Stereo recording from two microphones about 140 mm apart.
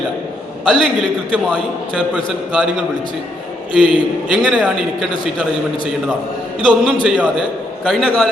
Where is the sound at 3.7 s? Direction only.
5° right (ahead or behind).